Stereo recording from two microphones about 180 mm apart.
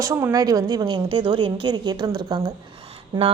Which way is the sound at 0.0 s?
15° right (ahead or behind).